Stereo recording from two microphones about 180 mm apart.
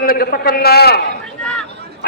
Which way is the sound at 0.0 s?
55° left (ahead or behind).